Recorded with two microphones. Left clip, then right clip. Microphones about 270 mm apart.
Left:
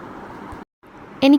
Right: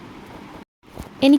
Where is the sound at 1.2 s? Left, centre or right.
Centre.